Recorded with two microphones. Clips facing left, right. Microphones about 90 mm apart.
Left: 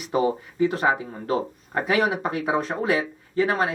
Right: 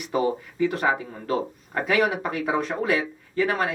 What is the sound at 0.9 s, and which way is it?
Speech, 5° left (ahead or behind).